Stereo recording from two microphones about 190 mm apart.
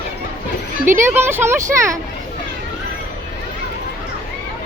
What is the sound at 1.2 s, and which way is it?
Speech, 10° right (ahead or behind).